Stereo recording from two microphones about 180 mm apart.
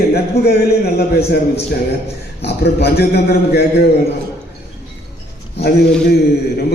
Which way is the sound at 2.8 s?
60° left (ahead or behind).